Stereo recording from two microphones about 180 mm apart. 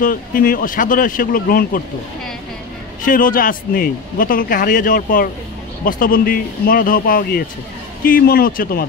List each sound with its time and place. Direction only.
0.0 s a man's voice: 50° left (ahead or behind)
3.1 s a man's voice: 50° left (ahead or behind)